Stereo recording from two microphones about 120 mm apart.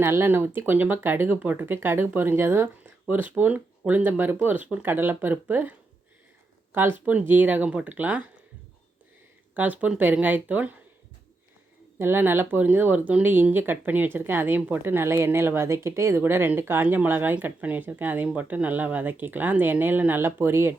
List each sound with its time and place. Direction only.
0.0 s speech: 20° right (ahead or behind)
7.0 s speech: 10° right (ahead or behind)
9.6 s speech: 15° right (ahead or behind)
11.9 s speech: 20° right (ahead or behind)